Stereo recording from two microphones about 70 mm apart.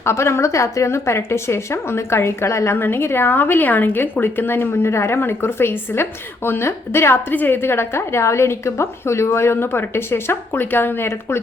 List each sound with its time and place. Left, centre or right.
0.0 s a woman's voice: left